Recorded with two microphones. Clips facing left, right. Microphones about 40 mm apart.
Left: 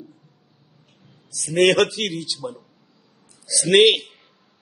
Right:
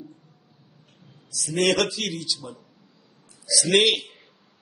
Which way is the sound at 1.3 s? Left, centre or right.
Left.